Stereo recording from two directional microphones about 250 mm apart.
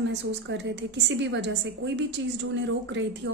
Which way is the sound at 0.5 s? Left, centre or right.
Right.